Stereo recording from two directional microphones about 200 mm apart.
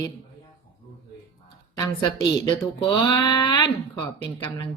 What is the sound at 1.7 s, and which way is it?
Speech, 20° left (ahead or behind).